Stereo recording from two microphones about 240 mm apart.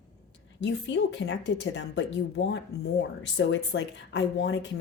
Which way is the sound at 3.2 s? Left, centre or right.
Left.